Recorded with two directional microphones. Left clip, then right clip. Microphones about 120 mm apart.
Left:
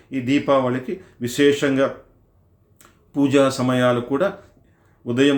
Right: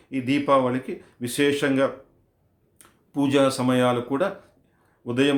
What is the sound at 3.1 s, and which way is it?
A man's voice, 25° right (ahead or behind).